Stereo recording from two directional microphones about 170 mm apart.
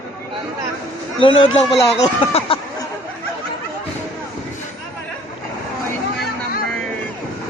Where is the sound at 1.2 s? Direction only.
30° left (ahead or behind).